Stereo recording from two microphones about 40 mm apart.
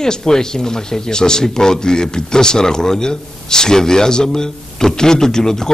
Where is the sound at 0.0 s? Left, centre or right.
Centre.